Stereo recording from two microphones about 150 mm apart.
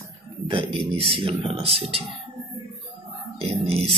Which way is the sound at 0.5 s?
35° right (ahead or behind).